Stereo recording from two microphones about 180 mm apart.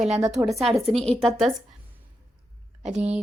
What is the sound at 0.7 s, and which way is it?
Speech, 35° right (ahead or behind).